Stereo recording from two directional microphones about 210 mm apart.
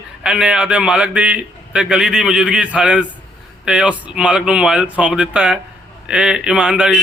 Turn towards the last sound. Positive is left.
turn(degrees=-5)  # may be behind; listen again after turning